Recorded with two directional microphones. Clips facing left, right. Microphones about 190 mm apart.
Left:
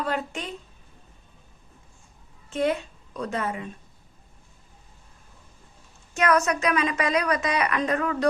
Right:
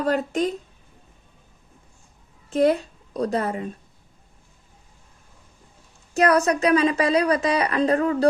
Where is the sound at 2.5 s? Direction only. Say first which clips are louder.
Right 6 dB; 35° right (ahead or behind).